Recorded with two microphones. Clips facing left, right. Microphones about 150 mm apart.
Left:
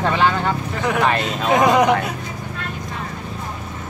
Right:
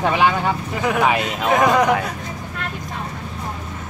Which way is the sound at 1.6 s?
15° left (ahead or behind).